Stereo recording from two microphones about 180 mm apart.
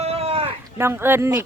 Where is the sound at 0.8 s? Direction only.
15° right (ahead or behind).